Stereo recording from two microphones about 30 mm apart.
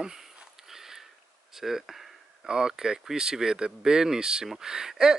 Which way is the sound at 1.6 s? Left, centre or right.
Centre.